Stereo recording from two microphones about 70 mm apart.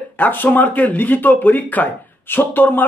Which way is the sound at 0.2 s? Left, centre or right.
Left.